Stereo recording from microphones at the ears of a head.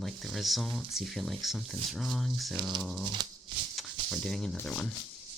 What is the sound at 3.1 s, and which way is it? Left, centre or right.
Shuffling cards, right.